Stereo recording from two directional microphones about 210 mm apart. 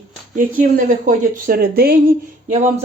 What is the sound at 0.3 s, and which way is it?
A woman's voice, 40° right (ahead or behind).